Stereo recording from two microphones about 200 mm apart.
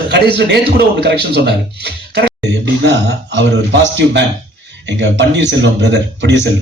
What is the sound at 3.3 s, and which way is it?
A man's voice, 65° right (ahead or behind).